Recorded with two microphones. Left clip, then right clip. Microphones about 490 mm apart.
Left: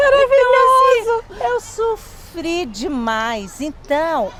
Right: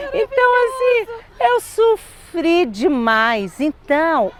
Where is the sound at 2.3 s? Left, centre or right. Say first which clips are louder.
Right 6 dB; right.